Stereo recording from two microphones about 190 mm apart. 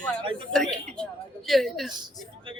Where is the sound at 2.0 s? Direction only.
25° right (ahead or behind).